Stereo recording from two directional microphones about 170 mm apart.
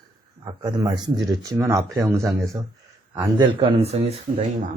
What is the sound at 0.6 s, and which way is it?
Speech, 25° right (ahead or behind).